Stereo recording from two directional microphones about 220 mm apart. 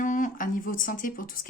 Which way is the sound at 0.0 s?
35° left (ahead or behind).